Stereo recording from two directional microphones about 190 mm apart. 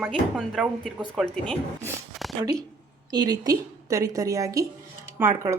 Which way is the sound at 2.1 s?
Centre (ahead or behind).